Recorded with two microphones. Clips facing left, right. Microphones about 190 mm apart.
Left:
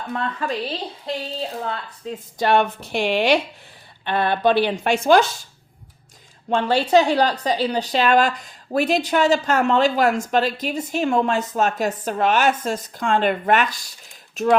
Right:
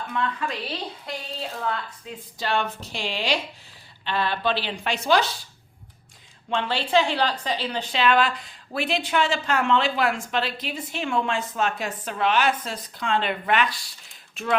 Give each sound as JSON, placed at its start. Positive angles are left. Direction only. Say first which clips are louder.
{"t": 0.1, "sound": "a woman's voice", "louder": "left 3 dB", "side_deg": 40}
{"t": 2.4, "sound": "a woman's voice", "louder": "left 8 dB", "side_deg": 60}
{"t": 6.5, "sound": "a woman's voice", "louder": "left 6 dB", "side_deg": 45}